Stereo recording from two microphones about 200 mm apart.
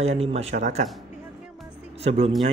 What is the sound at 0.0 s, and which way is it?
Speech, 30° right (ahead or behind).